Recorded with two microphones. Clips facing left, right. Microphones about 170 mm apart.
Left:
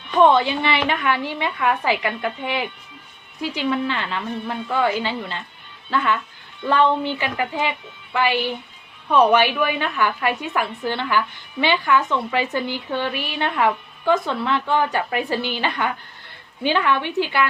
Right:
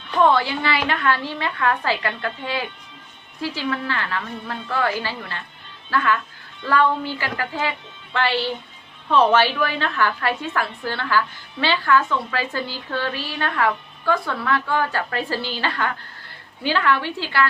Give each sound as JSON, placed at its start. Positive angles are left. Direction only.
{"t": 0.1, "sound": "a woman's voice", "side_deg": 20}